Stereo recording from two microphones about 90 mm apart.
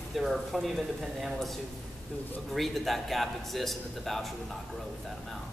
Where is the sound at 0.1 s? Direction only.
Centre (ahead or behind).